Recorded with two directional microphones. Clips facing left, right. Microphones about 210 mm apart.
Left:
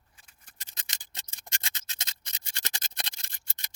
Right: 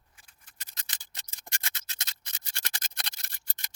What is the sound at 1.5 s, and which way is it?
Scratch, 50° right (ahead or behind).